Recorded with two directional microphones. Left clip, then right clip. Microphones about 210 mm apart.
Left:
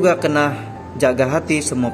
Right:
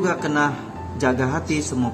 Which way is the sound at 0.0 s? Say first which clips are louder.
Left 5 dB; 15° left (ahead or behind).